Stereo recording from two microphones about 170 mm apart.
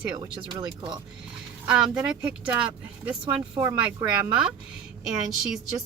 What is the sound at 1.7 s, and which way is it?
A woman's voice, 5° right (ahead or behind).